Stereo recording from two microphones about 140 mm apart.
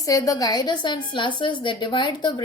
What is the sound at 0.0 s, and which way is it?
A woman's voice, 25° left (ahead or behind).